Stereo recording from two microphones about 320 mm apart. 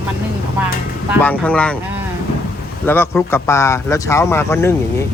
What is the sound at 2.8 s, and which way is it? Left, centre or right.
Speech, centre.